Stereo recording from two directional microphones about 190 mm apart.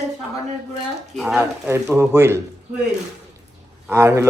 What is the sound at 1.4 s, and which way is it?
A man's voice, 15° right (ahead or behind).